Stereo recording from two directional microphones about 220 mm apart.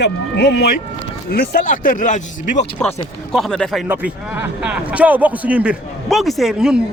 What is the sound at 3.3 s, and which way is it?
A man's voice, centre (ahead or behind).